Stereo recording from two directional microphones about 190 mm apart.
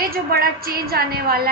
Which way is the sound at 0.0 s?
50° right (ahead or behind).